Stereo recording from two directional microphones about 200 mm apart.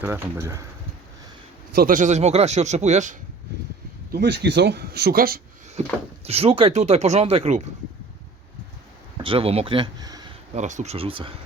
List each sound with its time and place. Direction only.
0.0 s speech: 10° right (ahead or behind)
1.7 s speech: 45° right (ahead or behind)
4.1 s speech: 55° right (ahead or behind)
6.2 s speech: 30° right (ahead or behind)
9.1 s speech: 25° right (ahead or behind)
10.5 s speech: 35° right (ahead or behind)